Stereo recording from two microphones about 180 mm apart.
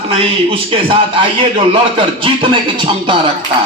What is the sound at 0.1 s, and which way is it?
A man's voice, 30° right (ahead or behind).